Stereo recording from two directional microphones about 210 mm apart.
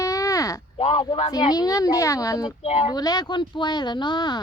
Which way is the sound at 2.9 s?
20° left (ahead or behind).